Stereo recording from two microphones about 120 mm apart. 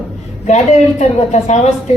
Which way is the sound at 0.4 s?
70° left (ahead or behind).